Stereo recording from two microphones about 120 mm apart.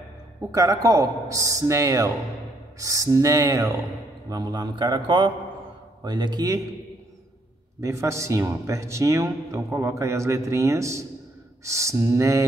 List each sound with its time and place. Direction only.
0.4 s a man's voice: 30° right (ahead or behind)
7.8 s speech: 25° right (ahead or behind)